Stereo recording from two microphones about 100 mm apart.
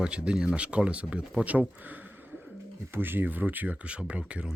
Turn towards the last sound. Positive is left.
turn(degrees=-10)  # may be behind; listen again after turning